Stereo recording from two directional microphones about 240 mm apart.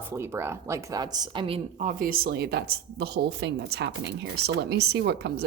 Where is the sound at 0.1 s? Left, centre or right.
Centre.